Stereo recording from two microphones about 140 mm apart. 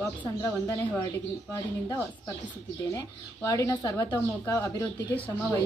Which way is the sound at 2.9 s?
25° left (ahead or behind).